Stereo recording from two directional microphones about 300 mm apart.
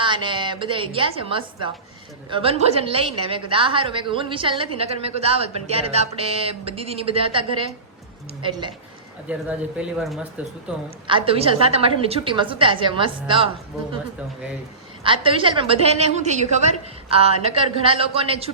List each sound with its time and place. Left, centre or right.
0.0 s a woman's voice: centre
9.3 s speech: centre
11.0 s a woman's voice: centre
15.0 s a woman's voice: centre